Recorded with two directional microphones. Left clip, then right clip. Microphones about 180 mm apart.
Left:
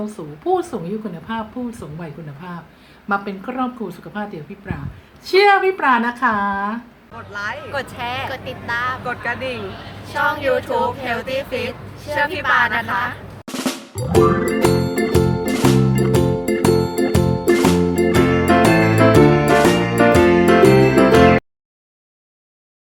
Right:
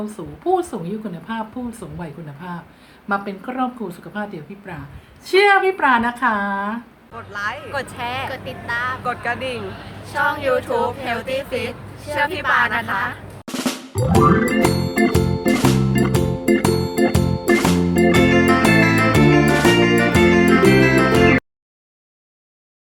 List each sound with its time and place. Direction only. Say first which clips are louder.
0.0 s a woman's voice: even; 5° right (ahead or behind)
7.3 s speech: right 1 dB; 20° right (ahead or behind)
7.7 s a woman's voice: left 1 dB; centre (ahead or behind)
8.3 s speech: left 1 dB; 15° left (ahead or behind)
9.0 s speech: even; 20° right (ahead or behind)
11.0 s a woman's voice: left 1 dB; 5° right (ahead or behind)
12.5 s music: left 1 dB; centre (ahead or behind)